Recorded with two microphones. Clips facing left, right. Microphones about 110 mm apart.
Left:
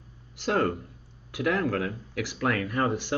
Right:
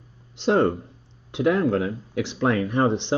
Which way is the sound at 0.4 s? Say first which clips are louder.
Right 6 dB; 25° right (ahead or behind).